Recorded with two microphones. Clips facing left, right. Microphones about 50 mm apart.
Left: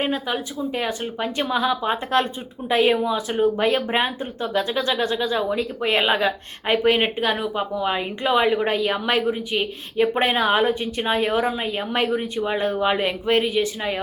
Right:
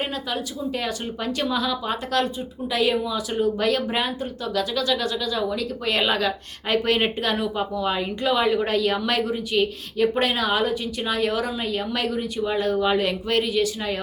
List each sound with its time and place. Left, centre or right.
0.0 s speech: left